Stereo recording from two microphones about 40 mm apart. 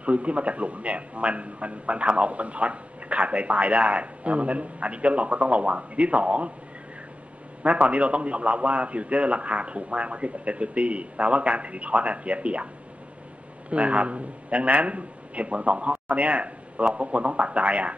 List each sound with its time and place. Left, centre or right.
0.0 s a man's voice: right
7.6 s a man's voice: right
13.7 s a man's voice: right